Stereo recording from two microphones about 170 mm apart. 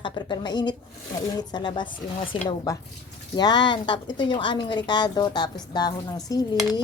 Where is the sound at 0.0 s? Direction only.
25° left (ahead or behind).